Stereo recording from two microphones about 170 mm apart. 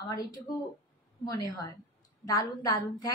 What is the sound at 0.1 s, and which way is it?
A woman's voice, 25° left (ahead or behind).